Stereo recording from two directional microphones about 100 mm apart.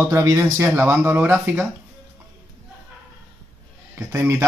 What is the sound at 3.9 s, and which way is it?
Speech, 25° right (ahead or behind).